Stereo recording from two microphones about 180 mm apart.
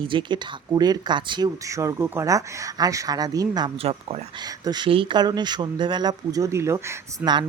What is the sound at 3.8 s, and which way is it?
Speech, 35° right (ahead or behind).